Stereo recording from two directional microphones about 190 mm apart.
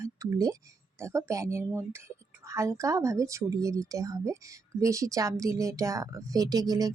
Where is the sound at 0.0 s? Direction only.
15° right (ahead or behind).